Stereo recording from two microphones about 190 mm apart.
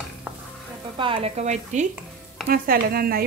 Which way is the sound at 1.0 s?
30° right (ahead or behind).